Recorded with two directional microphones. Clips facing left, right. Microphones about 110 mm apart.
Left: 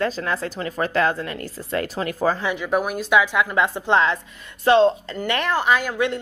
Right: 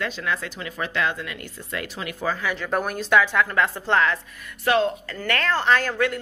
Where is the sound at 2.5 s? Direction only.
10° left (ahead or behind).